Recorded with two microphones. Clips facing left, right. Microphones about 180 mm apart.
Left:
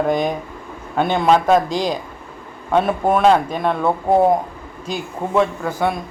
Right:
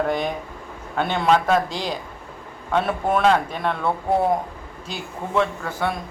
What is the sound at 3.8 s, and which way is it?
Speech, 45° left (ahead or behind).